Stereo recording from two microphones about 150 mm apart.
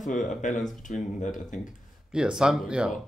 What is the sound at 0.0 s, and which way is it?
Speech, 55° left (ahead or behind).